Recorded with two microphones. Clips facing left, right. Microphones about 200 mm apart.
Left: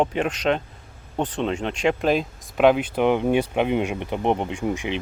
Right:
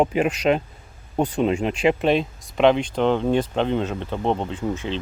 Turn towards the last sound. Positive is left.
turn(degrees=15)  # may be behind; listen again after turning